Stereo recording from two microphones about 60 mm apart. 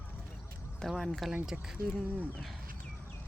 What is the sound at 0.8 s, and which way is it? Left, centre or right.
Speech, centre.